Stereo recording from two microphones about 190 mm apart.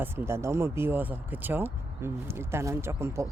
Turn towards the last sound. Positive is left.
turn(degrees=-15)  # may be behind; listen again after turning